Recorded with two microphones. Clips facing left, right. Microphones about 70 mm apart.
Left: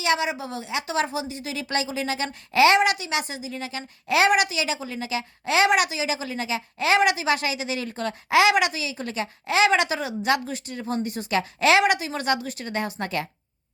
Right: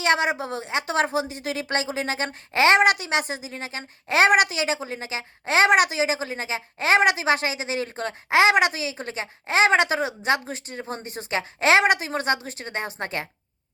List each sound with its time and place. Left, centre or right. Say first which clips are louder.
0.0 s a woman's voice: right 2 dB; right